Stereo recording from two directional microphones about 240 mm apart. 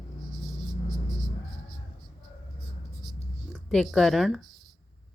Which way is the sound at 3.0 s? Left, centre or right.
Centre.